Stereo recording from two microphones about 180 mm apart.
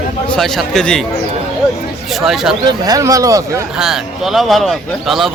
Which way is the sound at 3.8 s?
Centre (ahead or behind).